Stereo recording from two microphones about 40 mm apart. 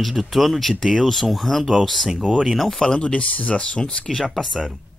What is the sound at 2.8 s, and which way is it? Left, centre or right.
Speech, left.